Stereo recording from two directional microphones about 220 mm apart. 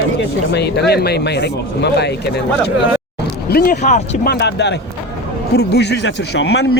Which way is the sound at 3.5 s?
40° left (ahead or behind).